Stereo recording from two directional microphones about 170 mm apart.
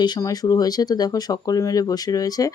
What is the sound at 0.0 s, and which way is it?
Speech, 25° left (ahead or behind).